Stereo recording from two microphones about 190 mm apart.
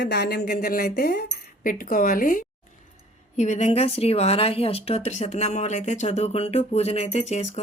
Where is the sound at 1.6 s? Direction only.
45° left (ahead or behind).